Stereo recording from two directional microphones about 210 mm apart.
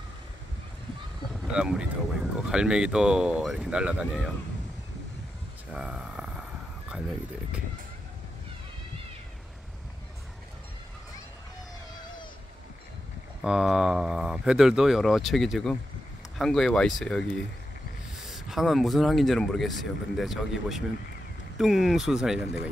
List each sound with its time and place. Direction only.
1.4 s speech: 5° right (ahead or behind)
5.7 s a sound: 5° right (ahead or behind)
13.4 s speech: 5° right (ahead or behind)
18.2 s speech: centre (ahead or behind)